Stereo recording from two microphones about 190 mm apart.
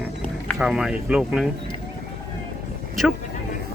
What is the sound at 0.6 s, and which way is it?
Speech, 5° right (ahead or behind).